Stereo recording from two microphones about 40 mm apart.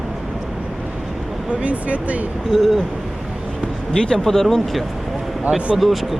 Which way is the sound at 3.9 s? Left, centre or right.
Centre.